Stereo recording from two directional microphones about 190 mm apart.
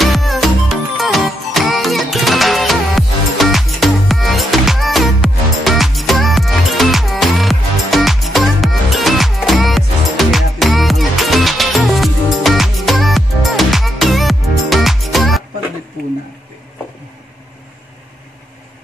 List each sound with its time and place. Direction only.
0.0 s music: centre (ahead or behind)